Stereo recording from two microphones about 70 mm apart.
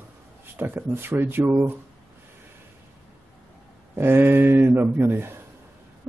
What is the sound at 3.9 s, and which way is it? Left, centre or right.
Speech, right.